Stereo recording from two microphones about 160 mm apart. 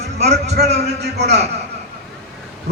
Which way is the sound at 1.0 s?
90° right.